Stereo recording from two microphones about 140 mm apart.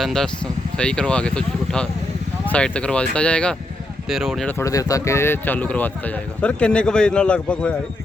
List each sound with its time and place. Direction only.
0.0 s speech: 5° left (ahead or behind)
4.4 s speech: 20° left (ahead or behind)